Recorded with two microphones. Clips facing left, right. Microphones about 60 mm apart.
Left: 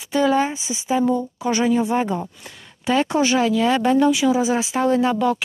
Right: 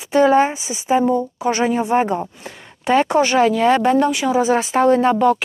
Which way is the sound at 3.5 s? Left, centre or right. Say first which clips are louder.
Right 3 dB; centre.